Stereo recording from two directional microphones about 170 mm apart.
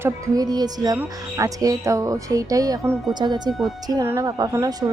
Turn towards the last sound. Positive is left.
turn(degrees=-20)  # may be behind; listen again after turning